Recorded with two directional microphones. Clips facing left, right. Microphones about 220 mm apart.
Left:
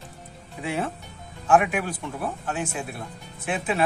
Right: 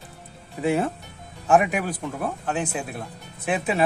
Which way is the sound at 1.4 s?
40° right (ahead or behind).